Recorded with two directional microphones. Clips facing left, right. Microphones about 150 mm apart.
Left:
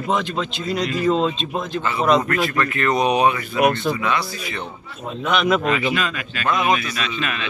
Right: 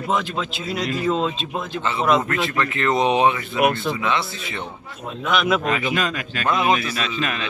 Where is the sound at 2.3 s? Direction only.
20° right (ahead or behind).